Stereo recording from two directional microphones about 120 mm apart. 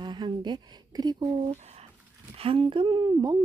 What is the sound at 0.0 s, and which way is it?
Speech, 40° right (ahead or behind).